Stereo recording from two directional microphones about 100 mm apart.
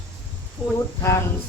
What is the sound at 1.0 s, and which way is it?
Speech, 30° left (ahead or behind).